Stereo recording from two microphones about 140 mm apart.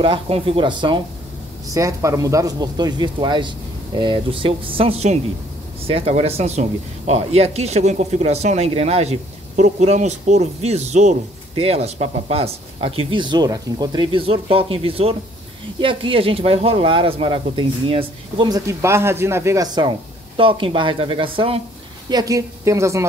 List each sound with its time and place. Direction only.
0.0 s speech: 40° right (ahead or behind)
1.7 s speech: 20° right (ahead or behind); by 18.5 s 40° right (ahead or behind)
18.5 s speech: 20° right (ahead or behind); by 21.6 s 40° right (ahead or behind)
22.1 s a woman's voice: 25° right (ahead or behind)